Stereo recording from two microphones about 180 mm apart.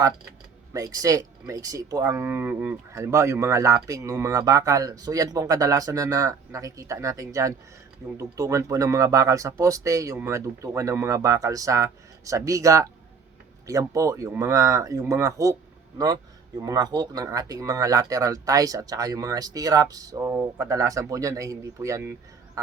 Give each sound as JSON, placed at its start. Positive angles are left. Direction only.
{"t": 0.7, "sound": "speech", "side_deg": -20}